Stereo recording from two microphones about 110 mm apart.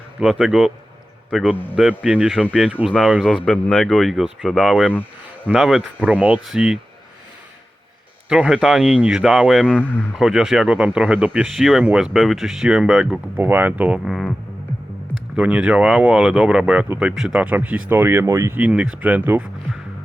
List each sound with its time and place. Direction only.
0.2 s speech: 5° right (ahead or behind)
1.7 s speech: 10° right (ahead or behind)
8.3 s speech: 5° right (ahead or behind)
9.6 s speech: 15° left (ahead or behind)
10.2 s speech: 5° right (ahead or behind)
14.0 s speech: centre (ahead or behind)
15.4 s speech: 10° right (ahead or behind); by 18.5 s 25° right (ahead or behind)
18.5 s speech: 10° right (ahead or behind)